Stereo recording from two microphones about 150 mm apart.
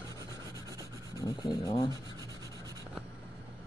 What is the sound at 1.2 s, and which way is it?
Rub, 30° left (ahead or behind).